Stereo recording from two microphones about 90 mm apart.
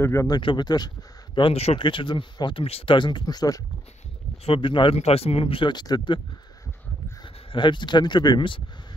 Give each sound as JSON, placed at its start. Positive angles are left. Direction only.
{"t": 0.0, "sound": "speech", "side_deg": 35}
{"t": 0.4, "sound": "speech", "side_deg": 70}
{"t": 0.7, "sound": "speech", "side_deg": 50}
{"t": 4.5, "sound": "speech", "side_deg": 70}
{"t": 5.7, "sound": "speech", "side_deg": 50}
{"t": 7.5, "sound": "speech", "side_deg": 60}